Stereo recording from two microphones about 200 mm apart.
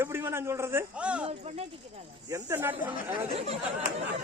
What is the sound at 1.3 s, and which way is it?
Speech, 30° right (ahead or behind).